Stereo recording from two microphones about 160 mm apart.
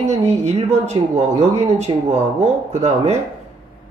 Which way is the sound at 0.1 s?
45° right (ahead or behind).